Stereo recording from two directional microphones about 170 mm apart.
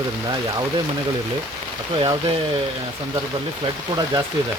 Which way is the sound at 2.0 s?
30° right (ahead or behind).